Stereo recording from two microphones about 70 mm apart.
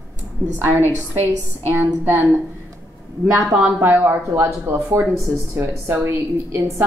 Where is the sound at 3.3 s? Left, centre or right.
Centre.